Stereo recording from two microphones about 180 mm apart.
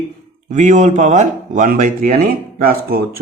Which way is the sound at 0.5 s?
40° right (ahead or behind).